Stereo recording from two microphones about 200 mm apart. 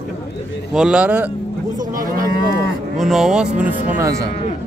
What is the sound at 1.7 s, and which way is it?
Cattle, 40° right (ahead or behind).